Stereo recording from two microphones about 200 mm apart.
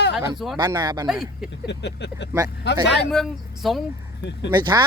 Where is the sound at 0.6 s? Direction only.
20° right (ahead or behind).